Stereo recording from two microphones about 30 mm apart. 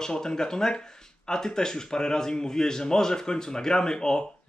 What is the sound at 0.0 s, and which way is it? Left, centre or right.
Speech, left.